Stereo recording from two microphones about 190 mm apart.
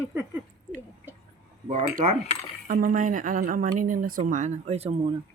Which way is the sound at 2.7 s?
45° right (ahead or behind).